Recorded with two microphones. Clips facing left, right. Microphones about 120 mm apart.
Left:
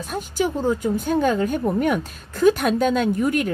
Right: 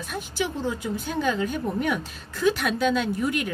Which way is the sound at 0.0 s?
45° left (ahead or behind).